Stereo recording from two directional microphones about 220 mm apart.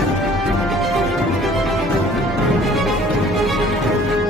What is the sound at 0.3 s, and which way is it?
Music, centre (ahead or behind).